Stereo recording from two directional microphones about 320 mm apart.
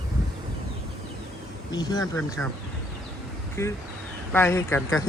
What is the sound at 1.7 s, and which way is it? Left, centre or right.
Speech, centre.